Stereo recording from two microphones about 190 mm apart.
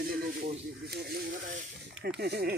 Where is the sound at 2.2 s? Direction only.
60° right (ahead or behind).